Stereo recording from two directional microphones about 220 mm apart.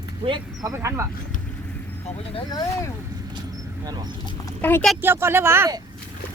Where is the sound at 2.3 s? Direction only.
15° left (ahead or behind).